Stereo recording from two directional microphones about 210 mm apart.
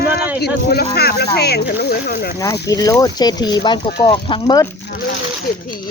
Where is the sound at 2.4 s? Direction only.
15° left (ahead or behind).